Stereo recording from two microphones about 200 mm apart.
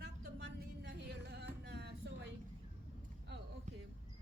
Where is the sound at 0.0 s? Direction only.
60° right (ahead or behind).